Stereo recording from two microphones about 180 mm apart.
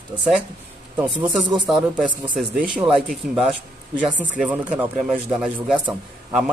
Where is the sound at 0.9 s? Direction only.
10° right (ahead or behind).